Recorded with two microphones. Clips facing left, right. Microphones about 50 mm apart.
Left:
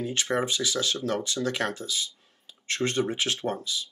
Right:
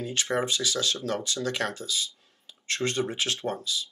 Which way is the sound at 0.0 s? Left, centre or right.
Centre.